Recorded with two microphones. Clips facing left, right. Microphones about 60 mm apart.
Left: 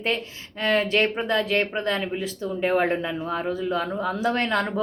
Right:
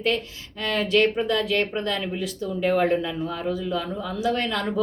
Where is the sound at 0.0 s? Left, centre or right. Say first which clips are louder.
Right 2 dB; left.